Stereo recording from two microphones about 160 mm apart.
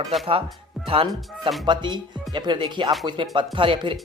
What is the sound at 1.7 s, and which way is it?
Speech, 30° right (ahead or behind).